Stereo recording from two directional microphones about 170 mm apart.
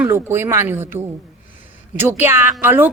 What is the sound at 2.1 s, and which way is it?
Speech, 15° right (ahead or behind).